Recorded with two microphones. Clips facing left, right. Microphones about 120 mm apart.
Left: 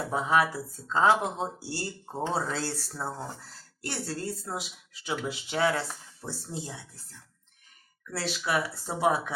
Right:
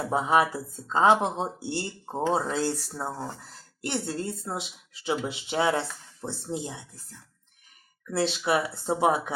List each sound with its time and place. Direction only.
0.1 s speech: 25° right (ahead or behind)
8.1 s speech: 25° right (ahead or behind)